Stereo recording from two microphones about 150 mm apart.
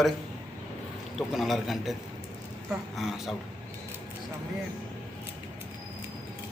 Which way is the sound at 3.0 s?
Centre (ahead or behind).